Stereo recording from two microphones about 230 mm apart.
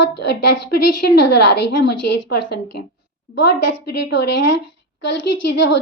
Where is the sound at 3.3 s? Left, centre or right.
Left.